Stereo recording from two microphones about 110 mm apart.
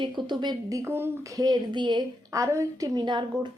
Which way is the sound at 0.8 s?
20° right (ahead or behind).